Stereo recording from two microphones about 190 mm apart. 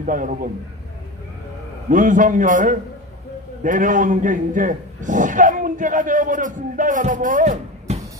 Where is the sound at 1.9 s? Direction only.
45° right (ahead or behind).